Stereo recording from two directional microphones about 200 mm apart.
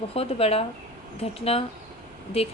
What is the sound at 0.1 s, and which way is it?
Speech, 30° left (ahead or behind).